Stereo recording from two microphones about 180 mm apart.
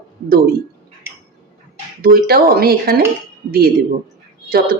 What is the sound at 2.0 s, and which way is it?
Speech, 55° right (ahead or behind).